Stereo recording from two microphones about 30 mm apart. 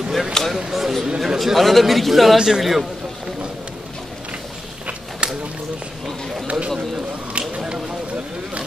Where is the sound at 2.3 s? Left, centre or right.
Right.